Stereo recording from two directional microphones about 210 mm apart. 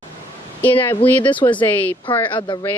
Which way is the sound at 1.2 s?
25° left (ahead or behind).